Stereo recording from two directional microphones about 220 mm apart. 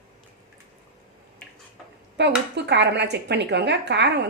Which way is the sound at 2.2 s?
50° right (ahead or behind).